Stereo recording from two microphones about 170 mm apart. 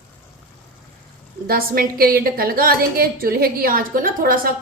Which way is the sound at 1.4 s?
60° right (ahead or behind).